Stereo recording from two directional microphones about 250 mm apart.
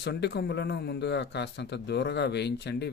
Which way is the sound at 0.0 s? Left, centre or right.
Left.